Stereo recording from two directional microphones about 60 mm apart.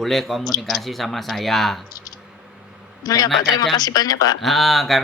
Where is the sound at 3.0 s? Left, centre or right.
Left.